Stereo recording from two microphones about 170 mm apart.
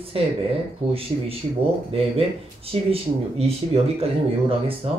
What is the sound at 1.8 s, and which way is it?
Speech, 35° right (ahead or behind).